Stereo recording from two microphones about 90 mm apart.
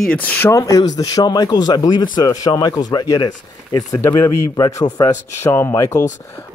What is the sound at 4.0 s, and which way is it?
Speech, 35° left (ahead or behind).